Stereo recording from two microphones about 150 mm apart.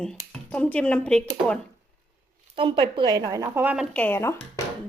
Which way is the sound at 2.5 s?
35° right (ahead or behind).